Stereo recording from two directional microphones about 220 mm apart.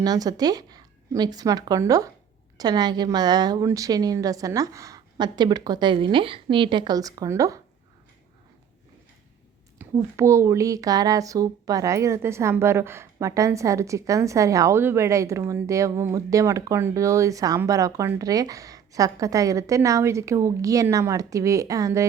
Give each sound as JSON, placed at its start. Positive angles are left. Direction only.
{"t": 0.0, "sound": "a woman's voice", "side_deg": -15}
{"t": 9.7, "sound": "a woman's voice", "side_deg": -10}